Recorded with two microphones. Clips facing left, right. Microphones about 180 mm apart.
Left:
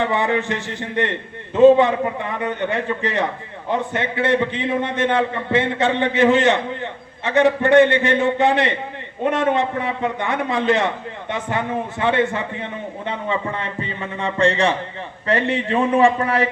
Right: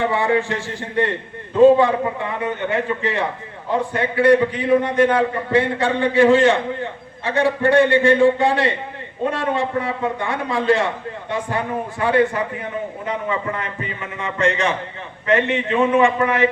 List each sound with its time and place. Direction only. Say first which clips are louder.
0.0 s a man's voice: right 1 dB; 20° left (ahead or behind)
3.7 s a man's voice: right 1 dB; 25° left (ahead or behind)